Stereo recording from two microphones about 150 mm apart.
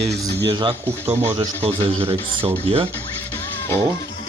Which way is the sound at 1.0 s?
20° right (ahead or behind).